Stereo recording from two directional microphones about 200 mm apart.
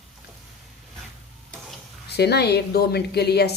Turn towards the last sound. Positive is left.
turn(degrees=55)  # may be behind; listen again after turning